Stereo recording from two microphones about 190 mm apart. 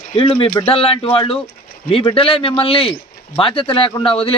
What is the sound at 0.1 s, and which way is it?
Speech, 30° left (ahead or behind).